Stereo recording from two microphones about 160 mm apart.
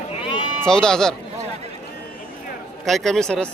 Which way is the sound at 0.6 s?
5° left (ahead or behind).